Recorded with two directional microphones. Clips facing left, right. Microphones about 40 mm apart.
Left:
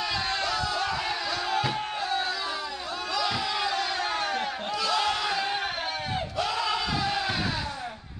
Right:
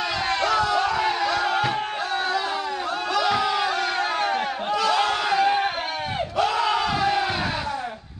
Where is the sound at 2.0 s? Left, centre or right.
Right.